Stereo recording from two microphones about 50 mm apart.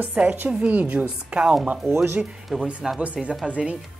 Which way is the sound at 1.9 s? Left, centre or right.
Right.